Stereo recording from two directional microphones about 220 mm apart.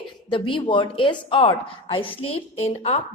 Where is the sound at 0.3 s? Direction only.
25° left (ahead or behind).